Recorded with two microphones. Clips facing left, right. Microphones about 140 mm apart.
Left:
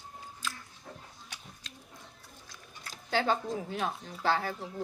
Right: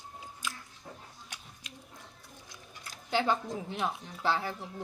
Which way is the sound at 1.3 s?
10° right (ahead or behind).